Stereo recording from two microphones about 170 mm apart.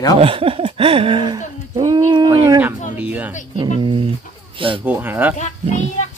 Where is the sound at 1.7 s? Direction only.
25° right (ahead or behind).